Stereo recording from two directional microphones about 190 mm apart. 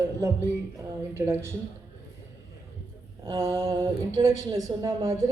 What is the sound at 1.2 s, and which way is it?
Speech, 15° right (ahead or behind).